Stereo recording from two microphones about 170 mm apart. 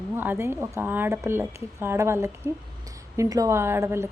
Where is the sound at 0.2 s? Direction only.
15° right (ahead or behind).